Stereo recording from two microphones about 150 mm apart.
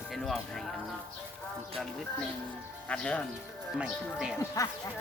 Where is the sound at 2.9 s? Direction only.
10° left (ahead or behind).